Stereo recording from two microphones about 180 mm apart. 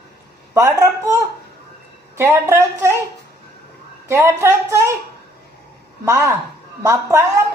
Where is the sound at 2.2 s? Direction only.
15° right (ahead or behind).